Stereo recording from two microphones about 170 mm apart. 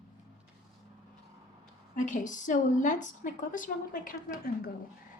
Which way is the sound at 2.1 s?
50° left (ahead or behind).